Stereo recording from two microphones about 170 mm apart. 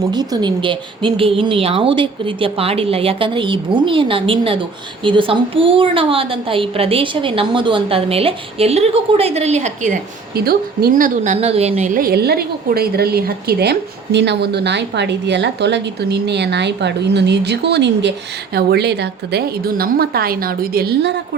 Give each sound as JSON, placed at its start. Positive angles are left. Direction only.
{"t": 0.1, "sound": "a woman's voice", "side_deg": -25}
{"t": 10.3, "sound": "speech", "side_deg": -65}
{"t": 11.9, "sound": "a woman's voice", "side_deg": -65}
{"t": 18.5, "sound": "a woman's voice", "side_deg": -75}